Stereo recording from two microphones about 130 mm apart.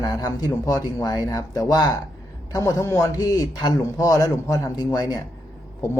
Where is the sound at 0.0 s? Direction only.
30° left (ahead or behind).